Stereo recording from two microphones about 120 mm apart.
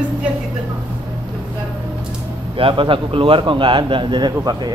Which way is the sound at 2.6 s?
45° right (ahead or behind).